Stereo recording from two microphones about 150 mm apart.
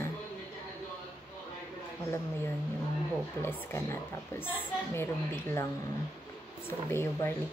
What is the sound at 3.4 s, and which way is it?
Speech, 15° left (ahead or behind).